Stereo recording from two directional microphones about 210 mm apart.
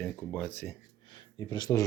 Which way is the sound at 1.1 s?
20° left (ahead or behind).